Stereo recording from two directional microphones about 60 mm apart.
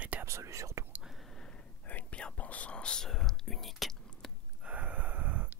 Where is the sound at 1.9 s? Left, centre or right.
Left; by 4.3 s centre.